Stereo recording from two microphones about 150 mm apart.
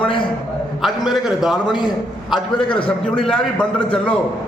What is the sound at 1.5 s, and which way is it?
A man's voice, 30° left (ahead or behind).